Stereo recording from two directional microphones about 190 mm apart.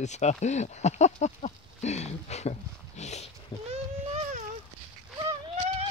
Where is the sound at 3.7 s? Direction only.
35° right (ahead or behind).